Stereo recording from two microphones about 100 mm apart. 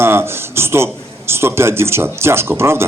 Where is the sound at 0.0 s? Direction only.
25° right (ahead or behind).